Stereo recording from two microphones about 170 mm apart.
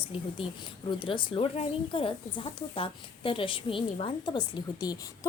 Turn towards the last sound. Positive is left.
turn(degrees=20)  # may be behind; listen again after turning